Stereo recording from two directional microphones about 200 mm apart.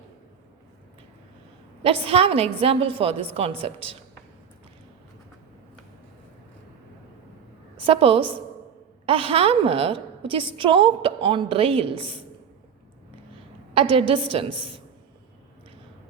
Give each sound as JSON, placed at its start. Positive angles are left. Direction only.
{"t": 1.8, "sound": "a woman's voice", "side_deg": -30}
{"t": 7.8, "sound": "a woman's voice", "side_deg": -25}
{"t": 13.9, "sound": "a woman's voice", "side_deg": -25}